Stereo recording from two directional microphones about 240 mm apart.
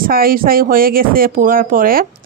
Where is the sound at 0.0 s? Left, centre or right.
Right.